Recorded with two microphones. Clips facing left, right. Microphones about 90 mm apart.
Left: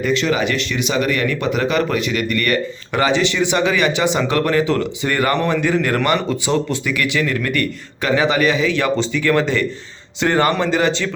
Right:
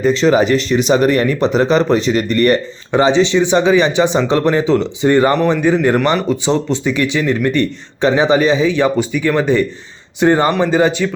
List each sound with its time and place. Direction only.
0.0 s speech: 35° right (ahead or behind)
2.9 s a man's voice: 25° right (ahead or behind)